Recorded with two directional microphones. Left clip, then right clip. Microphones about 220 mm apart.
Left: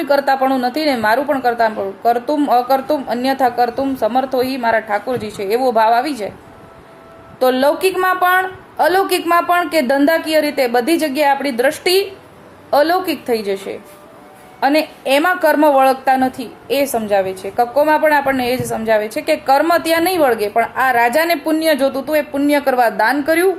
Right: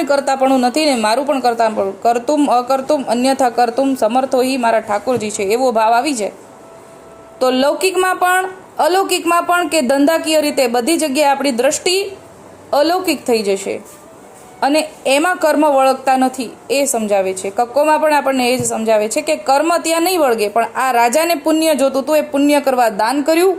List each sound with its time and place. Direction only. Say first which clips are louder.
0.0 s a woman's voice: even; 25° right (ahead or behind)
7.3 s a woman's voice: even; 20° right (ahead or behind)